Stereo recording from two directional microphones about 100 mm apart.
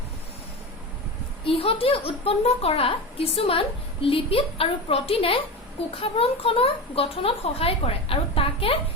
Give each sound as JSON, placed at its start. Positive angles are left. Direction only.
{"t": 1.5, "sound": "a woman's voice", "side_deg": 70}